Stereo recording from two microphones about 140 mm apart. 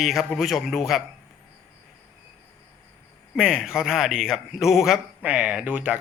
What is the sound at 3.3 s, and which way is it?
Speech, 5° right (ahead or behind).